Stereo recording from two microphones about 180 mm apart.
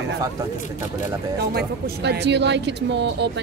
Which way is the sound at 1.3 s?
60° right (ahead or behind).